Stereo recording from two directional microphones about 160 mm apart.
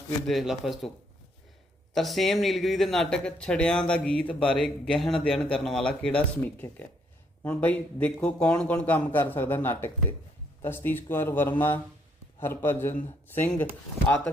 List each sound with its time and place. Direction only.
0.3 s speech: centre (ahead or behind)
1.9 s a man's voice: centre (ahead or behind)
12.9 s a man's voice: 50° left (ahead or behind)
13.2 s a man's voice: 10° left (ahead or behind)